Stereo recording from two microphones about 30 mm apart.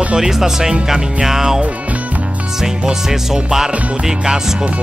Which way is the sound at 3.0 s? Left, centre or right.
Centre.